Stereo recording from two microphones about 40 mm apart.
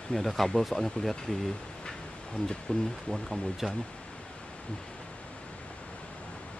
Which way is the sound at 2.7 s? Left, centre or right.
Left.